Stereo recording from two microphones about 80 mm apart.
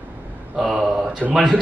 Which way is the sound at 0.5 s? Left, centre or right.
Centre.